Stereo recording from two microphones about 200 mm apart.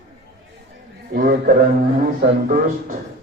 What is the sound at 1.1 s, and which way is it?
A man's voice, 50° right (ahead or behind).